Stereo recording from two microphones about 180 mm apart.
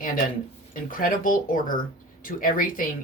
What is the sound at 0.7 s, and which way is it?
Speech, 50° left (ahead or behind).